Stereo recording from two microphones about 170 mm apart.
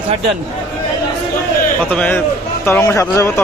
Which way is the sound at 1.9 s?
10° left (ahead or behind).